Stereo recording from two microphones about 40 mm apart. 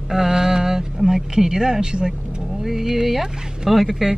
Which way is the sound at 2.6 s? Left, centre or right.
Centre.